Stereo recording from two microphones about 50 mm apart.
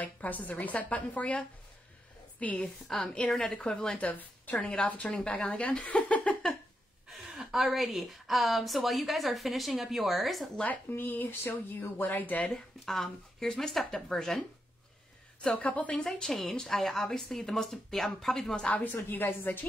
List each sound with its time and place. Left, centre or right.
0.0 s speech: left
2.5 s speech: centre
4.0 s a woman's voice: left
4.8 s a woman's voice: left
7.1 s a woman's voice: centre
10.9 s speech: left
12.4 s speech: centre
15.4 s a woman's voice: left
16.0 s speech: centre
19.0 s a woman's voice: left